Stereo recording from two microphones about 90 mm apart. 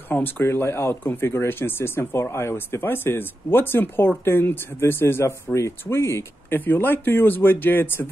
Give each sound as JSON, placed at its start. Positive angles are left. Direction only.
{"t": 0.1, "sound": "speech", "side_deg": 25}